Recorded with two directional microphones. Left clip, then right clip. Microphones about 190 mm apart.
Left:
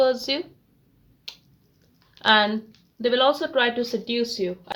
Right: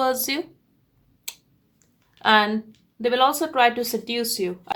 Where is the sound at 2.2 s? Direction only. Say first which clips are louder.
Right 1 dB; 40° right (ahead or behind).